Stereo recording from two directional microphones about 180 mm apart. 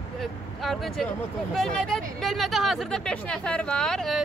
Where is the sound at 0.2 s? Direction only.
Centre (ahead or behind).